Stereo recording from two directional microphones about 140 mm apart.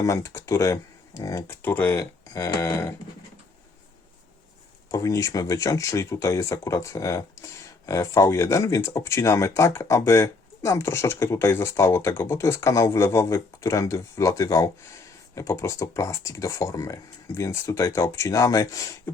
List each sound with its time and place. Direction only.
0.0 s speech: 20° left (ahead or behind)
4.9 s speech: 25° left (ahead or behind)